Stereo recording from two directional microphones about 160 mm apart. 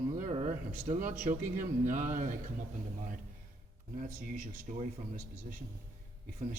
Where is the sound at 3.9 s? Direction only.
55° right (ahead or behind).